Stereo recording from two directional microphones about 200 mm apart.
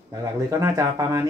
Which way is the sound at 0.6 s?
15° right (ahead or behind).